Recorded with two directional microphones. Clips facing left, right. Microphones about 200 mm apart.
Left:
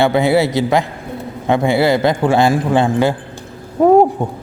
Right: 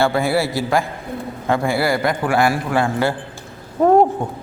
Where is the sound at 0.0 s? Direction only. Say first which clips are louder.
Left 5 dB; 20° left (ahead or behind).